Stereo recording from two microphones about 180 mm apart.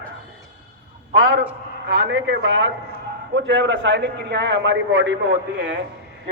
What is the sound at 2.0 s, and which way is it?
A man's voice, 70° right (ahead or behind).